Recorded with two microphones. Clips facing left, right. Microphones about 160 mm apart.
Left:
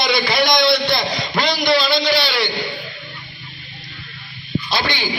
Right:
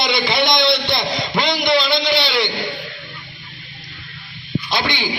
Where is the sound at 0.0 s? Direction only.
20° right (ahead or behind).